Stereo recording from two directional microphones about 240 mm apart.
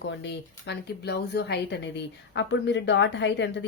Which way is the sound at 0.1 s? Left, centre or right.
Left.